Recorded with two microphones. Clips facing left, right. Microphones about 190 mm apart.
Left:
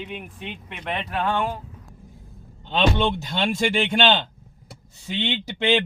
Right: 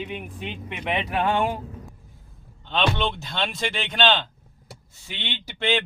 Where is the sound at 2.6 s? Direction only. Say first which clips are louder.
Left 3 dB; 15° left (ahead or behind).